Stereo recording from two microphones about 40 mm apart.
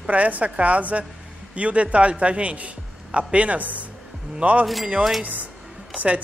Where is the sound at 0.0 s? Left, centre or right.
Right.